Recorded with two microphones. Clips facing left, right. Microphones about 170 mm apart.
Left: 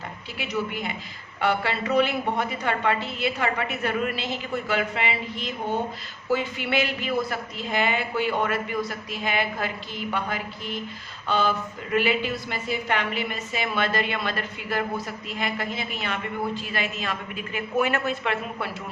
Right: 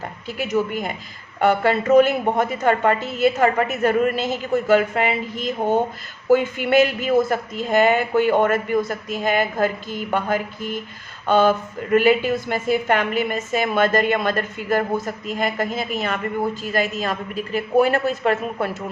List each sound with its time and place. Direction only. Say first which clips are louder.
0.3 s a woman's voice: right 7 dB; 45° right (ahead or behind)